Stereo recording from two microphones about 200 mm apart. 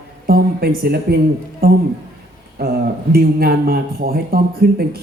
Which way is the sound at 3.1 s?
50° right (ahead or behind).